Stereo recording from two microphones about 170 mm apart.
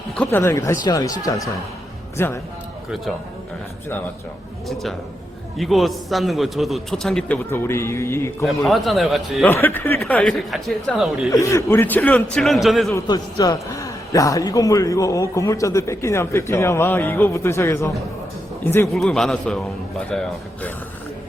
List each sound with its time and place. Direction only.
0.2 s a man's voice: 15° left (ahead or behind)
4.7 s a man's voice: centre (ahead or behind)
7.5 s a man's voice: 15° left (ahead or behind)
8.4 s a man's voice: centre (ahead or behind)
9.5 s a man's voice: 10° left (ahead or behind)
11.3 s a man's voice: 20° left (ahead or behind); by 12.9 s centre (ahead or behind)
12.9 s a man's voice: 25° left (ahead or behind)
18.9 s a man's voice: 5° left (ahead or behind)